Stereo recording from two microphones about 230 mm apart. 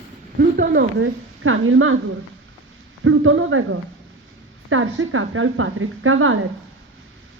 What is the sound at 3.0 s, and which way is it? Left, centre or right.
A woman's voice, right.